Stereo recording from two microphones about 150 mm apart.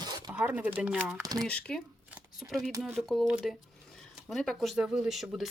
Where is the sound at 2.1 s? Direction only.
5° right (ahead or behind).